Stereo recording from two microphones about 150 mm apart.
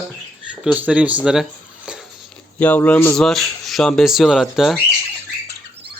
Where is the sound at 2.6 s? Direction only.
10° left (ahead or behind).